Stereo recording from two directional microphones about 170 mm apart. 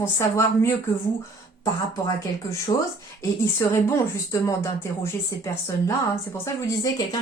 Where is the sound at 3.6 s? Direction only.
20° left (ahead or behind).